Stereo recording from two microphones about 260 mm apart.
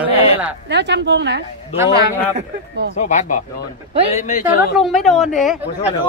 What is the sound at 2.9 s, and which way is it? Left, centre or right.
Speech, left.